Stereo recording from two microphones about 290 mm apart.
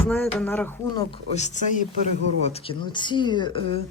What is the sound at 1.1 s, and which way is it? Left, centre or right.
A woman's voice, left.